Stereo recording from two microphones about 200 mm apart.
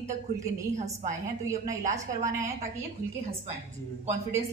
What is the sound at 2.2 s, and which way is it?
Speech, 15° right (ahead or behind).